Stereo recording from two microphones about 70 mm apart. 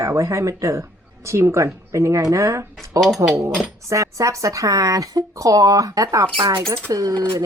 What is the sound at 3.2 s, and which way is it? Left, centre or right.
Speech, right.